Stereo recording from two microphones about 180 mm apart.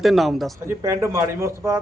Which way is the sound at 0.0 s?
Centre (ahead or behind).